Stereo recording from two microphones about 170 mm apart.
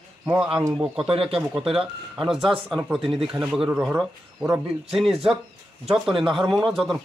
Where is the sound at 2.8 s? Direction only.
5° right (ahead or behind).